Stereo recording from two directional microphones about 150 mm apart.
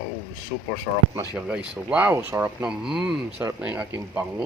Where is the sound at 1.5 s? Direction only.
5° right (ahead or behind).